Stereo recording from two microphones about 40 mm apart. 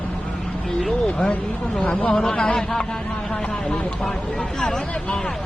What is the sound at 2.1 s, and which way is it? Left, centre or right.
Speech, centre.